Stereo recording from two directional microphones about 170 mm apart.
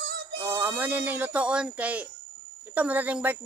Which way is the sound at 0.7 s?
10° right (ahead or behind).